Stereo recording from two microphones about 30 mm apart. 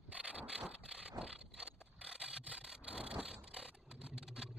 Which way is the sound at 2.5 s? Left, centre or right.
Right.